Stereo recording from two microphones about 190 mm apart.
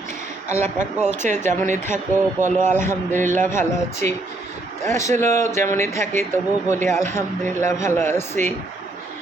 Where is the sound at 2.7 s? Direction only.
10° left (ahead or behind).